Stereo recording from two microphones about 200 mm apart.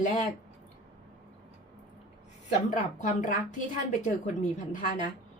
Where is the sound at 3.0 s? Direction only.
40° left (ahead or behind).